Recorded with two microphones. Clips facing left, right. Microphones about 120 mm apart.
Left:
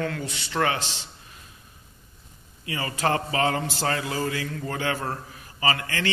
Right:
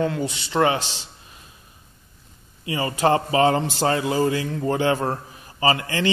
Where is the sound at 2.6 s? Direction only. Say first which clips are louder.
Right 6 dB; 20° right (ahead or behind).